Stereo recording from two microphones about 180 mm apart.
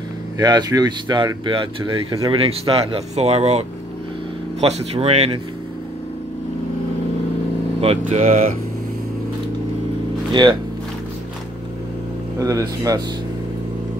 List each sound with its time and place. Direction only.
0.4 s speech: 25° right (ahead or behind)
7.8 s speech: 35° right (ahead or behind)
10.3 s speech: 25° right (ahead or behind)
12.4 s speech: 20° right (ahead or behind)